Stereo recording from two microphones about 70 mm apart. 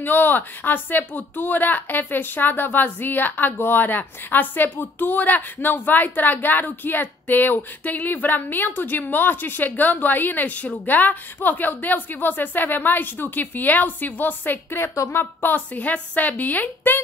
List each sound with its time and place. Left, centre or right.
0.0 s speech: left
15.0 s a woman's voice: left
15.4 s speech: left